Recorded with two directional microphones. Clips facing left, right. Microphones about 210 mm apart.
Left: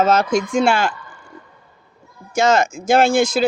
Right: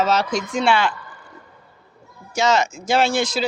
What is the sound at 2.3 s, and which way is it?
Speech, 50° left (ahead or behind).